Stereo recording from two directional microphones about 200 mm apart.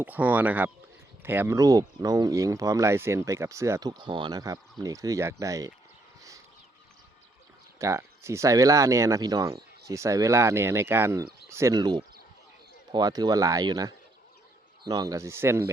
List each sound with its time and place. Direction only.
0.0 s speech: 10° right (ahead or behind)
7.8 s speech: 15° right (ahead or behind)